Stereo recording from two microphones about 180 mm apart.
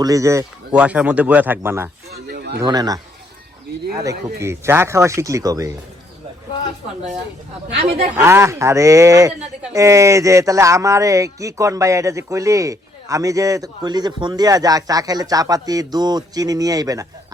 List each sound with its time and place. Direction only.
0.0 s speech: 20° right (ahead or behind)
2.1 s a sound: 60° right (ahead or behind)
2.6 s speech: 20° right (ahead or behind)
4.4 s speech: 15° right (ahead or behind)
8.1 s speech: 15° right (ahead or behind)